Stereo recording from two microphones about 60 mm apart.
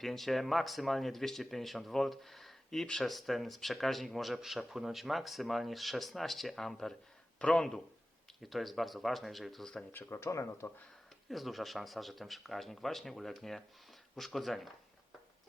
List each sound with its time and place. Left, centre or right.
0.0 s speech: centre
8.4 s speech: centre
9.9 s speech: left
11.3 s speech: centre